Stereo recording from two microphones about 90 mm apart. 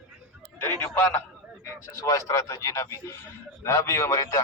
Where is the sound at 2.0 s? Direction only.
35° left (ahead or behind).